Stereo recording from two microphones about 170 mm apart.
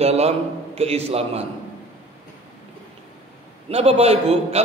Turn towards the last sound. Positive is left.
turn(degrees=-40)  # may be behind; listen again after turning